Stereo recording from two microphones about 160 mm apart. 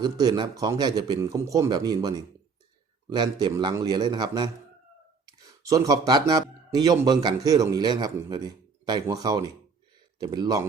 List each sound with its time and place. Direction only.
0.0 s speech: 25° right (ahead or behind)